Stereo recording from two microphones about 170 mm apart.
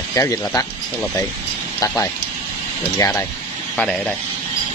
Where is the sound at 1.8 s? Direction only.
20° left (ahead or behind).